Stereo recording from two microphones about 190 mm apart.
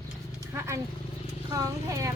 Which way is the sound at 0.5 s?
15° right (ahead or behind).